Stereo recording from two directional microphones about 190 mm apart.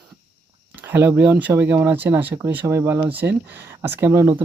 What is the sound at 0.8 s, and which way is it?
Speech, 10° right (ahead or behind).